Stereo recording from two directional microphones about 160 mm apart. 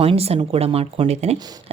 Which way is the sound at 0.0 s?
35° right (ahead or behind).